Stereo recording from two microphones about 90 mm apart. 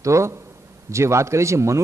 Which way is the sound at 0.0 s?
35° right (ahead or behind).